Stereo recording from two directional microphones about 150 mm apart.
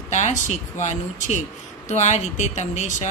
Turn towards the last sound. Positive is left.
turn(degrees=50)  # may be behind; listen again after turning